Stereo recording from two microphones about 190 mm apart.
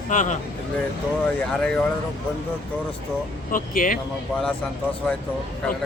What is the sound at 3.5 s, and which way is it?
Speech, 45° left (ahead or behind).